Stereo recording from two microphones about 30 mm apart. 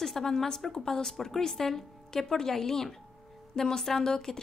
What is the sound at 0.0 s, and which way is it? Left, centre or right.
A woman's voice, centre.